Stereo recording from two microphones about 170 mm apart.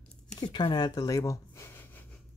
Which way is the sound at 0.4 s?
25° left (ahead or behind).